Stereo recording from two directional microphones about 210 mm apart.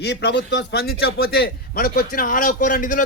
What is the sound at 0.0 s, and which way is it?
A man's voice, 55° left (ahead or behind).